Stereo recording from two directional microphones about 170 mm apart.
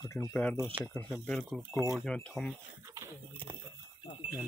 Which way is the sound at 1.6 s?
15° right (ahead or behind).